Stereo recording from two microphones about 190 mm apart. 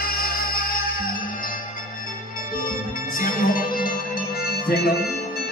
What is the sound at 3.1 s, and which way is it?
Music, 50° left (ahead or behind).